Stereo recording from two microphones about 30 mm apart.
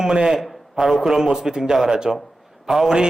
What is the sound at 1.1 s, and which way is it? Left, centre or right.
A man's voice, centre.